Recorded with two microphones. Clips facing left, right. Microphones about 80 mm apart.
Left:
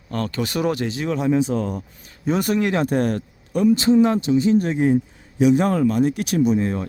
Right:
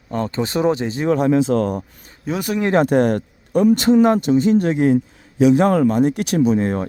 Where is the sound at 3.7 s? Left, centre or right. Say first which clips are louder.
Right 2 dB; right.